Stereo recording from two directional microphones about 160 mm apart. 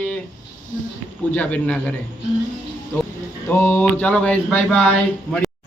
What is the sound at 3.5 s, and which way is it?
Speech, 15° left (ahead or behind).